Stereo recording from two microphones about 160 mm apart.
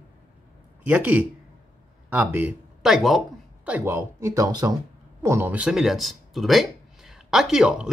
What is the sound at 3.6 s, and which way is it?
Speech, 10° right (ahead or behind).